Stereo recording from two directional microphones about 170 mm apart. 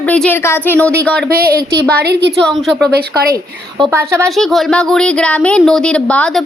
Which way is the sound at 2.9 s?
65° right (ahead or behind).